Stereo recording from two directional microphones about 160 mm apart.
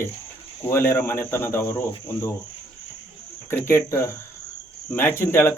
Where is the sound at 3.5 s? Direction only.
15° left (ahead or behind).